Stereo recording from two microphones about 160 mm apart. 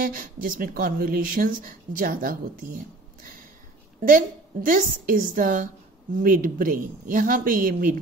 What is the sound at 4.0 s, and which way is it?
A woman's voice, 60° right (ahead or behind).